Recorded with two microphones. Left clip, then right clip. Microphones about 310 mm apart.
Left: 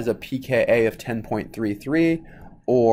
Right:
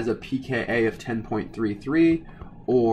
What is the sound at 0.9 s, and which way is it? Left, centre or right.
Speech, centre.